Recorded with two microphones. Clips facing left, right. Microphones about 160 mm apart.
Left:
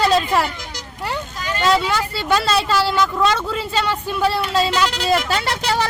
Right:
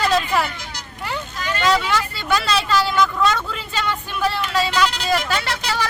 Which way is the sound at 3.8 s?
30° left (ahead or behind).